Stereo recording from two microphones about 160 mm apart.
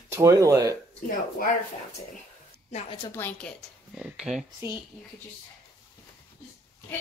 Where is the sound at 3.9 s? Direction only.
5° right (ahead or behind).